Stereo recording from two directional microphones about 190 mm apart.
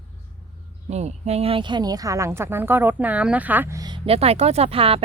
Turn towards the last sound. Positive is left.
turn(degrees=-30)  # may be behind; listen again after turning